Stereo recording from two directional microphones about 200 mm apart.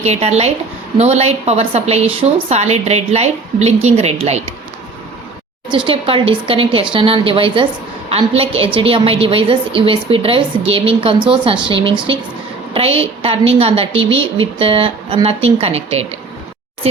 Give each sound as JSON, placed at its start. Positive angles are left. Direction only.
{"t": 0.0, "sound": "a woman's voice", "side_deg": -30}
{"t": 5.6, "sound": "a woman's voice", "side_deg": -25}